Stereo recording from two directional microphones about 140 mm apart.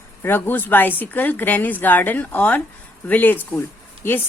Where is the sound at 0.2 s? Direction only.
15° left (ahead or behind).